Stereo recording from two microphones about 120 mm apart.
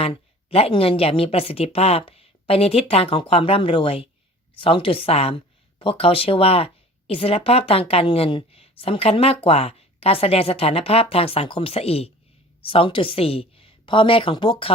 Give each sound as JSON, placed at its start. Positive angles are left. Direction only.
{"t": 0.0, "sound": "a woman's voice", "side_deg": 55}